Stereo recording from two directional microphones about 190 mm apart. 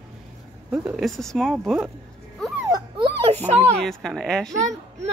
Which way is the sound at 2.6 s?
20° right (ahead or behind).